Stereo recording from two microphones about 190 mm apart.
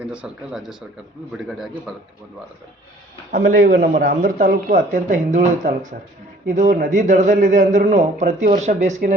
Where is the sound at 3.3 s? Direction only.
45° right (ahead or behind).